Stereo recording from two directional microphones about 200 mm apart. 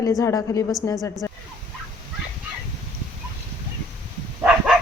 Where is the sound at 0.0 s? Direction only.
15° left (ahead or behind).